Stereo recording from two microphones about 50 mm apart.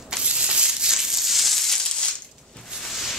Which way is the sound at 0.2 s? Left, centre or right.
Centre.